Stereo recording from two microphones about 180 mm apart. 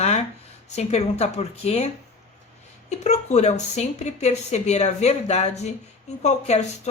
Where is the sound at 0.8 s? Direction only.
35° left (ahead or behind).